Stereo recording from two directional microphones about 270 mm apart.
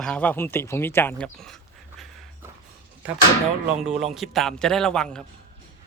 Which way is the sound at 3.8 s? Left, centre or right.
Centre.